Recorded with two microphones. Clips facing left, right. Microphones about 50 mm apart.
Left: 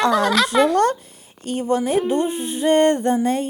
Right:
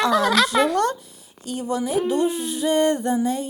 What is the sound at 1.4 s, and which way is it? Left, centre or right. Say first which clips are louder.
Speech: left 5 dB; left.